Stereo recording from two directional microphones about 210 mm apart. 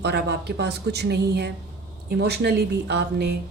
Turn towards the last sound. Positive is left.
turn(degrees=-50)  # may be behind; listen again after turning